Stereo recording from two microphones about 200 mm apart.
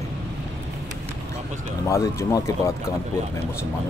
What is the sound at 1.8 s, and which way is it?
Speech, 15° left (ahead or behind).